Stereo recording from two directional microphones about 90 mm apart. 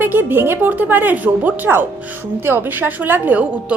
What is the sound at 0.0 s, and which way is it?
A woman's voice, 20° right (ahead or behind).